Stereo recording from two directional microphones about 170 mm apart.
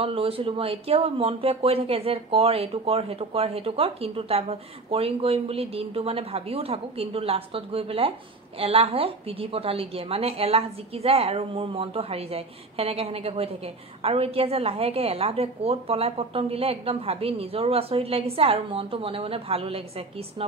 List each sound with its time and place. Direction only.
0.0 s speech: 35° right (ahead or behind)